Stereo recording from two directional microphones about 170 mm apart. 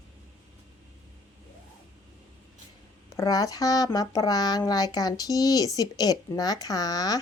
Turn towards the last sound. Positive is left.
turn(degrees=20)  # may be behind; listen again after turning